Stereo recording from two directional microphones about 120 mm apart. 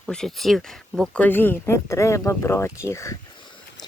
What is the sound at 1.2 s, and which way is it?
Speech, 15° left (ahead or behind).